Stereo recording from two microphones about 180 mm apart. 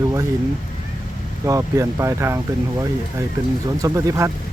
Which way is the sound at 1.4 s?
15° right (ahead or behind).